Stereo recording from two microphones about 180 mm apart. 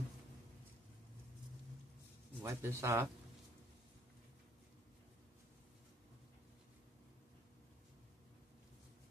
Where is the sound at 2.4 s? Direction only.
15° right (ahead or behind).